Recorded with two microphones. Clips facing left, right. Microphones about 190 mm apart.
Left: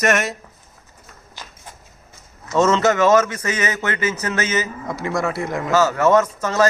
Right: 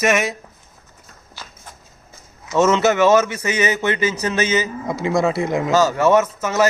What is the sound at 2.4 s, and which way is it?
A man's voice, 10° right (ahead or behind).